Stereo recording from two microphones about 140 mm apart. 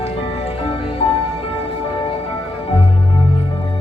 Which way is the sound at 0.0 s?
45° left (ahead or behind).